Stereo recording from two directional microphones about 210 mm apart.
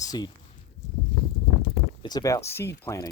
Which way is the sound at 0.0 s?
15° left (ahead or behind).